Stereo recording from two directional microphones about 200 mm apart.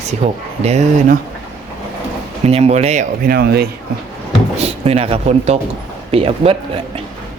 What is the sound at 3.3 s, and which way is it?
Speech, 50° right (ahead or behind).